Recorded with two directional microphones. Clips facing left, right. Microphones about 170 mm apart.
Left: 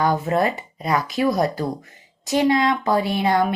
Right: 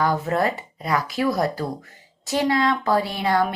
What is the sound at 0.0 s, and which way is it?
Speech, 20° left (ahead or behind).